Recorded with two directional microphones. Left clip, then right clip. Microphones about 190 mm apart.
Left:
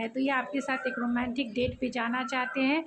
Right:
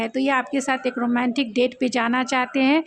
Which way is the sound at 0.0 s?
50° right (ahead or behind).